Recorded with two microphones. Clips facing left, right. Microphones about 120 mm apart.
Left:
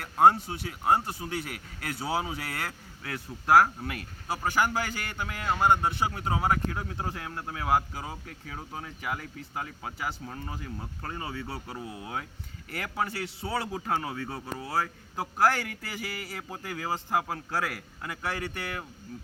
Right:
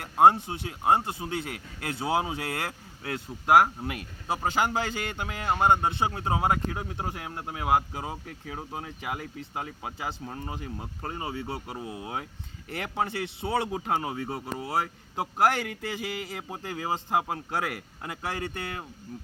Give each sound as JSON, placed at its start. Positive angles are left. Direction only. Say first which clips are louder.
{"t": 0.0, "sound": "speech", "louder": "right 2 dB", "side_deg": -20}